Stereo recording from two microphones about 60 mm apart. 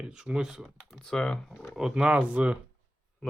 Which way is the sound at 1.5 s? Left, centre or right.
Centre.